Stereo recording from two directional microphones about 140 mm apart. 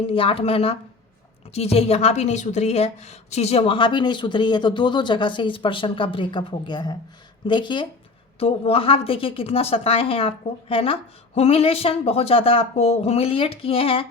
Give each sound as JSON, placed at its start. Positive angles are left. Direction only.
{"t": 0.1, "sound": "a woman's voice", "side_deg": 40}
{"t": 8.4, "sound": "a woman's voice", "side_deg": 45}